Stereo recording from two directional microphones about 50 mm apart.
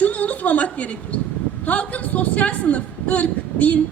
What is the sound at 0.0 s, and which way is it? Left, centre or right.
A woman's voice, left.